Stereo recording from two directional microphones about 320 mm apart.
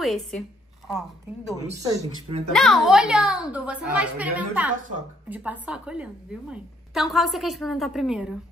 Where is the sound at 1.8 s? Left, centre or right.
Centre.